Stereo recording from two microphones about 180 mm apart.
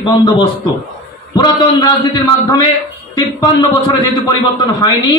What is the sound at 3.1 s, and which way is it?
Speech, 25° left (ahead or behind).